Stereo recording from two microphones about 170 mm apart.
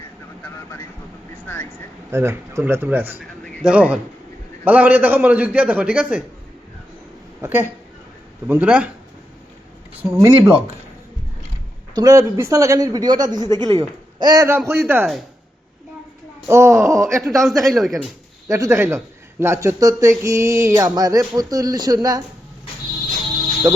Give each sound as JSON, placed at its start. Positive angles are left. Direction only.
{"t": 2.0, "sound": "speech", "side_deg": -15}
{"t": 7.4, "sound": "speech", "side_deg": -15}
{"t": 10.0, "sound": "speech", "side_deg": -15}
{"t": 11.9, "sound": "speech", "side_deg": -20}
{"t": 16.5, "sound": "speech", "side_deg": -15}
{"t": 17.2, "sound": "a man's voice", "side_deg": 0}
{"t": 18.4, "sound": "speech", "side_deg": -20}